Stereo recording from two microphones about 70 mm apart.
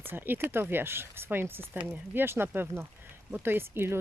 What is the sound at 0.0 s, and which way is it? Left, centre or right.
Speech, right.